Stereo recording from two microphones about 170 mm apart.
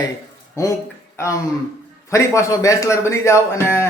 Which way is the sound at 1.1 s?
15° left (ahead or behind).